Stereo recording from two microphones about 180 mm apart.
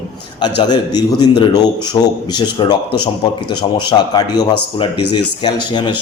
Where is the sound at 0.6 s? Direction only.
25° left (ahead or behind).